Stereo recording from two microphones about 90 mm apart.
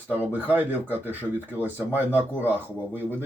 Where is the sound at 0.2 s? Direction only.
20° right (ahead or behind).